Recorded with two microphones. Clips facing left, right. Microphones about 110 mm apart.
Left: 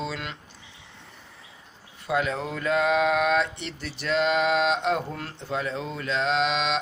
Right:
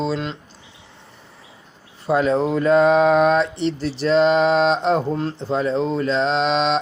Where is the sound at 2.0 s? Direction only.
35° right (ahead or behind).